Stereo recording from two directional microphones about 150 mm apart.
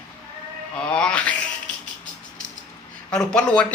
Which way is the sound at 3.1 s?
5° left (ahead or behind).